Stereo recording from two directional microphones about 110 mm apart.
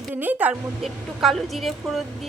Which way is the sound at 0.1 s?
15° right (ahead or behind).